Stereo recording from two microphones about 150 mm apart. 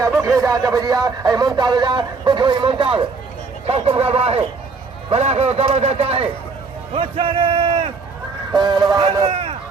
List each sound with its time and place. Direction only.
0.0 s a man's voice: 20° right (ahead or behind); by 7.9 s 40° right (ahead or behind)
8.5 s speech: 30° right (ahead or behind)
9.2 s a sound: 40° right (ahead or behind)